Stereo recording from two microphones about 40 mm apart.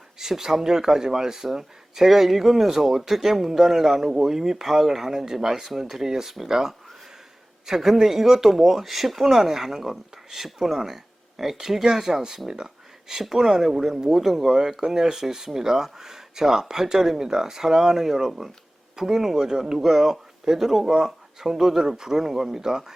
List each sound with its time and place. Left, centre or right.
0.2 s speech: centre
12.5 s a sound: centre
13.3 s speech: centre